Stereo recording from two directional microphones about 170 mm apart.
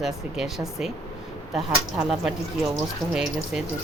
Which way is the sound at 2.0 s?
5° right (ahead or behind).